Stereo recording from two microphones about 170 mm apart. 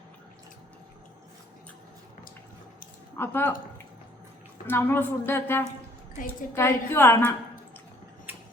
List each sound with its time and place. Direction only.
3.2 s a woman's voice: 15° left (ahead or behind)
4.6 s a woman's voice: 10° left (ahead or behind)
6.1 s a woman's voice: 50° left (ahead or behind)
6.6 s a woman's voice: 15° left (ahead or behind)
8.3 s mechanisms: 10° right (ahead or behind)